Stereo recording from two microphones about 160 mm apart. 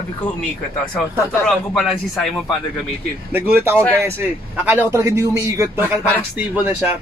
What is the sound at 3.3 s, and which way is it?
A man's voice, 15° right (ahead or behind).